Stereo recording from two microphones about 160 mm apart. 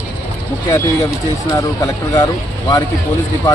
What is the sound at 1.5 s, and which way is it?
Speech, 20° left (ahead or behind).